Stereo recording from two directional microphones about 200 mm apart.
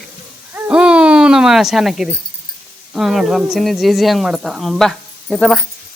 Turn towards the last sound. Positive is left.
turn(degrees=0)  # may be behind; listen again after turning